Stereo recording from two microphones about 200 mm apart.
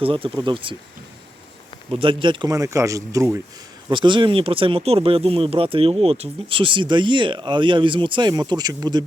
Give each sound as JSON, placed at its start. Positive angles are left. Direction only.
{"t": 0.0, "sound": "speech", "side_deg": -25}
{"t": 1.9, "sound": "speech", "side_deg": -25}